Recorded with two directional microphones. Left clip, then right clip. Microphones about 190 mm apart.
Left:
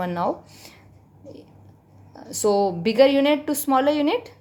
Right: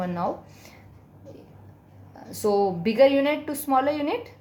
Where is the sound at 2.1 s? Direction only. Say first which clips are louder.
Left 3 dB; 50° left (ahead or behind).